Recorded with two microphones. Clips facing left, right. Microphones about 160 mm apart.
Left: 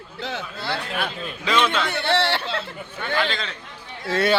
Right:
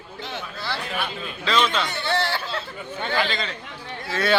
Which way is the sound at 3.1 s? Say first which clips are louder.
Left 1 dB; centre (ahead or behind).